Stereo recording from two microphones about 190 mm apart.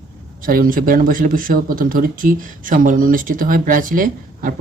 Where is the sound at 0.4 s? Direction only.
45° right (ahead or behind).